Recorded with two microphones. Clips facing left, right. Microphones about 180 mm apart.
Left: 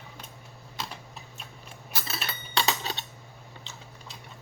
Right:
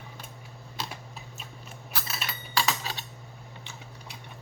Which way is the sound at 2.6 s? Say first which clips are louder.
Left 1 dB; 25° left (ahead or behind).